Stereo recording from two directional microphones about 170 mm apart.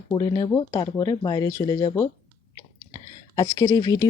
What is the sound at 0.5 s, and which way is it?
Speech, 20° left (ahead or behind).